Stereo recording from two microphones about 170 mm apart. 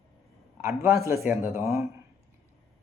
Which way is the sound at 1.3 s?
15° right (ahead or behind).